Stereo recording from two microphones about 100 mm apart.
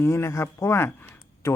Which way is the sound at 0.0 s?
25° left (ahead or behind).